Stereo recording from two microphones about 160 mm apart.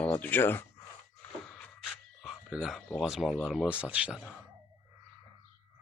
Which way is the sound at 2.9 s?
Centre (ahead or behind).